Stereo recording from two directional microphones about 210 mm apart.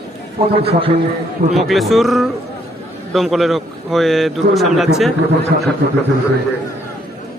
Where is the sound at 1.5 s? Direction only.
Centre (ahead or behind).